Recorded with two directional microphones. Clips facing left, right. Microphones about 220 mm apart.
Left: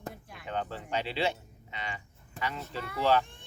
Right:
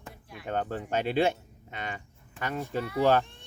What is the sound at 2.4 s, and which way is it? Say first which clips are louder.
Speech: right 1 dB; 40° left (ahead or behind).